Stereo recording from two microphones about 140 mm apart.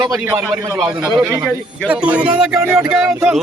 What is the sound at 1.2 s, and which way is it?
Speech, 20° right (ahead or behind).